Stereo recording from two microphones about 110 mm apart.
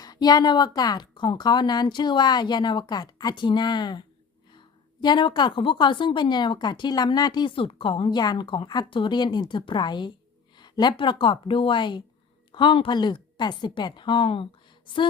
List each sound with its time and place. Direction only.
0.0 s a woman's voice: 35° left (ahead or behind)